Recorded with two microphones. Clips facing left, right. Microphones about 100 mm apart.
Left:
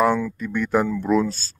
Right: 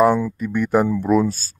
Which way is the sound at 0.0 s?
10° right (ahead or behind).